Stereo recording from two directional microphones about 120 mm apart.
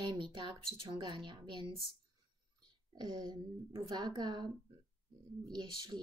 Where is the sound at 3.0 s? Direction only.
35° right (ahead or behind).